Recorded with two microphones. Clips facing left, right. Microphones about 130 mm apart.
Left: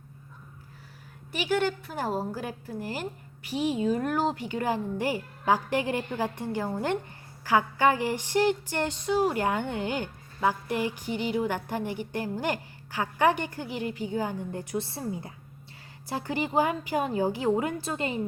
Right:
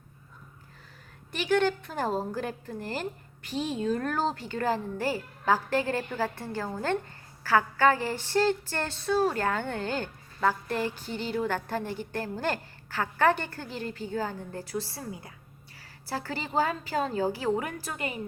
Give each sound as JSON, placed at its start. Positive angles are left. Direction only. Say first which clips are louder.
{"t": 1.3, "sound": "a woman's voice", "louder": "right 1 dB", "side_deg": 10}